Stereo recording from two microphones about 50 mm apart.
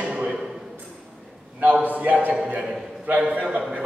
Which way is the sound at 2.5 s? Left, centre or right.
Right.